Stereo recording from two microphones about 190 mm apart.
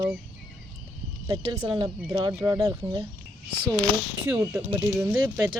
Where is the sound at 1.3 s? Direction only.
20° right (ahead or behind).